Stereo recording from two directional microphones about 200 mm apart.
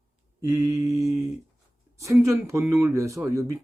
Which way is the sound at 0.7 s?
15° right (ahead or behind).